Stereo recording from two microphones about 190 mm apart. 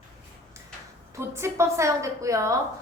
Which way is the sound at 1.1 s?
15° right (ahead or behind).